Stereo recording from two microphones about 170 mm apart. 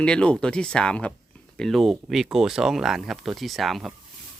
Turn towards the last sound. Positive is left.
turn(degrees=0)  # may be behind; listen again after turning